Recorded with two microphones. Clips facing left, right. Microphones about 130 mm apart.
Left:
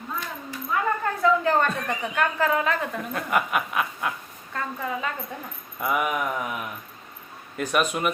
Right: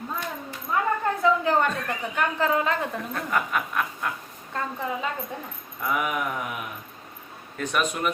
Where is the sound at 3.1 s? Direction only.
10° left (ahead or behind).